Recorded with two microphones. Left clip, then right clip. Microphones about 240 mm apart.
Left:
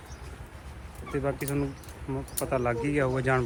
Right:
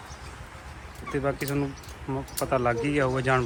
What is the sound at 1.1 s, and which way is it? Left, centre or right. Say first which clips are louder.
Speech: right 2 dB; centre.